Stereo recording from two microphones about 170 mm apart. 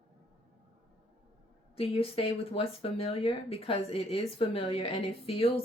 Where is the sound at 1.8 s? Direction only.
35° left (ahead or behind).